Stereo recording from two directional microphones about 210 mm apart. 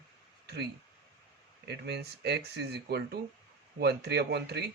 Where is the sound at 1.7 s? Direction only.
50° right (ahead or behind).